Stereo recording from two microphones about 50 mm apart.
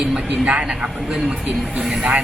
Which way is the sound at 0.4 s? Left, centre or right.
Centre.